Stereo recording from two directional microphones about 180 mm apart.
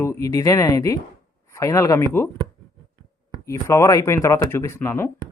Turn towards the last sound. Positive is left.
turn(degrees=15)  # may be behind; listen again after turning